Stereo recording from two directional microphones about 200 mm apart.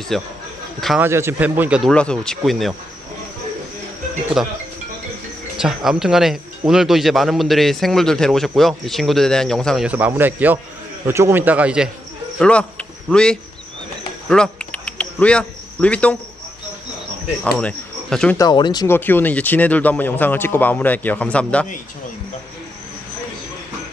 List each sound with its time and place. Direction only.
0.1 s a man's voice: centre (ahead or behind)
1.0 s a man's voice: 10° right (ahead or behind)
4.4 s a man's voice: centre (ahead or behind)
5.6 s a man's voice: centre (ahead or behind)
12.4 s speech: 5° left (ahead or behind)
14.3 s cricket: 5° left (ahead or behind)
17.4 s speech: 5° left (ahead or behind)
18.4 s speech: 20° left (ahead or behind)
18.9 s speech: 10° left (ahead or behind)